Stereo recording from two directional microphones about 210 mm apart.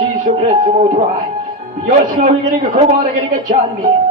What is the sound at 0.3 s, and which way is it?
Speech, 35° right (ahead or behind).